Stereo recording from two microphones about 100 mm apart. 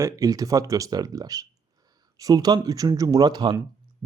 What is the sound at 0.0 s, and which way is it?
Speech, 35° right (ahead or behind).